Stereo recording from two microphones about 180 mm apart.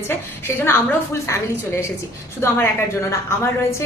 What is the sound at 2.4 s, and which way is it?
A woman's voice, 15° left (ahead or behind).